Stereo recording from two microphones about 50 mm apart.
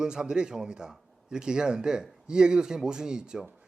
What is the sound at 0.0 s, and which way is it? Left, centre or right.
Speech, centre.